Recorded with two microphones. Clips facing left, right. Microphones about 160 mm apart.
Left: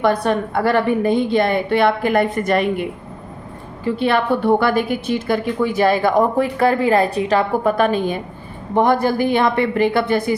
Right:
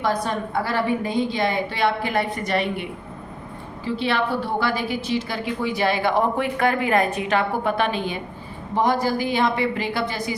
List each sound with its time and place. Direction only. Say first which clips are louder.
0.0 s a woman's voice: left 6 dB; 60° left (ahead or behind)
3.8 s a woman's voice: left 6 dB; 50° left (ahead or behind)